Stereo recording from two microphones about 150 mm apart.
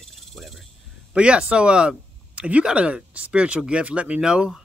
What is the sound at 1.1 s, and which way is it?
A man's voice, 5° right (ahead or behind).